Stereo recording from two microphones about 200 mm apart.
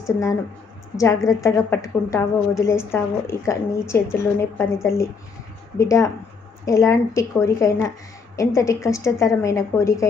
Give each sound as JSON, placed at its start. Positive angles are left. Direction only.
{"t": 0.1, "sound": "a woman's voice", "side_deg": 15}